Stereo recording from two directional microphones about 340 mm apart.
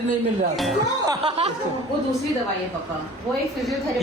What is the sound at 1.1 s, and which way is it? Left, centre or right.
Speech, centre.